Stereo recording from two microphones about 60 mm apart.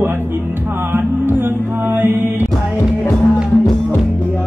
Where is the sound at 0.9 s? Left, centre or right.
Right.